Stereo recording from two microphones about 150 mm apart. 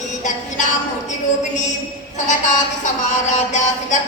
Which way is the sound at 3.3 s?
55° left (ahead or behind).